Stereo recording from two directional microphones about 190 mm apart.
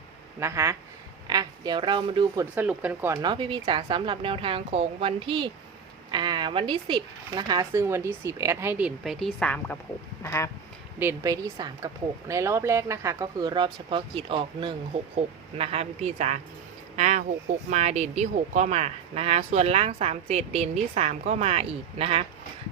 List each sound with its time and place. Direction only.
0.3 s a woman's voice: 15° right (ahead or behind)
3.2 s a woman's voice: 25° right (ahead or behind); by 10.5 s 15° left (ahead or behind)
11.0 s speech: 15° right (ahead or behind)